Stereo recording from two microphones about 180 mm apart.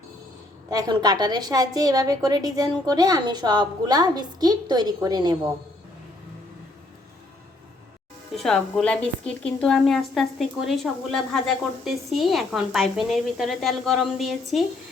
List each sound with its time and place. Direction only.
0.7 s a woman's voice: 20° right (ahead or behind)
8.4 s a woman's voice: centre (ahead or behind)